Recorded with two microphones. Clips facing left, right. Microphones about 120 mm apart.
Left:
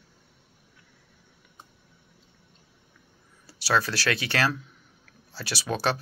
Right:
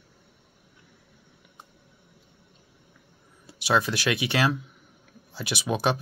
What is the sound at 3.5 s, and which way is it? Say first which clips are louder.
Speech: right 1 dB; 20° right (ahead or behind).